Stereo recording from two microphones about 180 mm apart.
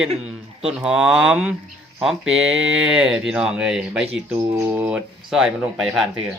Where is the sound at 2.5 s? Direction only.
90° right.